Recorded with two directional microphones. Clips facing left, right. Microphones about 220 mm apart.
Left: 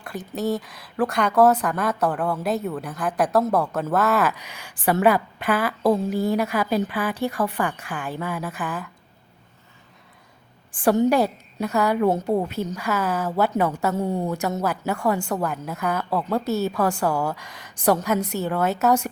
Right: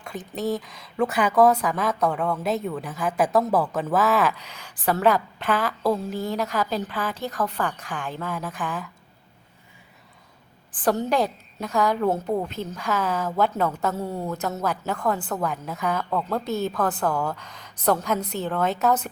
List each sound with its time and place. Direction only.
0.0 s speech: 5° left (ahead or behind)
10.7 s a woman's voice: 10° left (ahead or behind)